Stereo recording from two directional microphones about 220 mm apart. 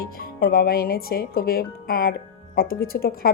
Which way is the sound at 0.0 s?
45° left (ahead or behind).